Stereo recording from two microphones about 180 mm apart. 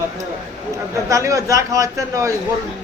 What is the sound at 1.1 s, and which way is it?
A man's voice, 20° right (ahead or behind).